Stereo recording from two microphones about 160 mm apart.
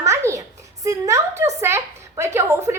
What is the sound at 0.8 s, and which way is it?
A woman's voice, 20° right (ahead or behind).